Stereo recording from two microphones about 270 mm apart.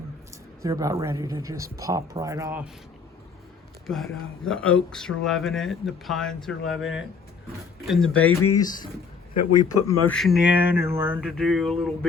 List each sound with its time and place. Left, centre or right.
0.6 s speech: centre
3.8 s speech: centre
9.3 s a man's voice: left
9.8 s speech: centre